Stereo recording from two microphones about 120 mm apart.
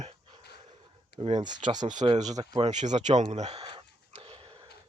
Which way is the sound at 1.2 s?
80° right.